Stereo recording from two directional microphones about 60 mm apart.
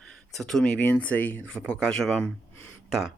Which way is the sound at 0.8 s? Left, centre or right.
Left.